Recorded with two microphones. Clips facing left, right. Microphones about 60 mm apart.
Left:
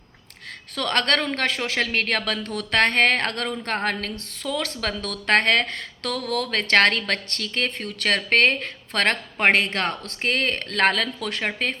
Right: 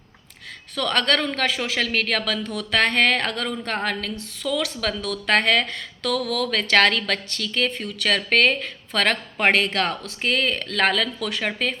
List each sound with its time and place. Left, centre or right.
0.8 s speech: left